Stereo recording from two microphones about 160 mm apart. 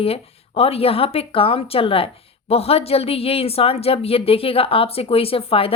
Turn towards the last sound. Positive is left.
turn(degrees=35)  # may be behind; listen again after turning